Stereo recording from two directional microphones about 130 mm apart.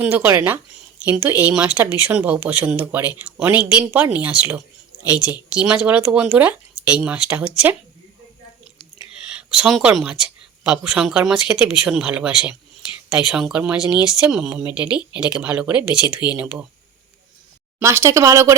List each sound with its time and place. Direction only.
0.0 s speech: 15° right (ahead or behind)
9.2 s speech: 5° right (ahead or behind)
17.7 s speech: 20° right (ahead or behind)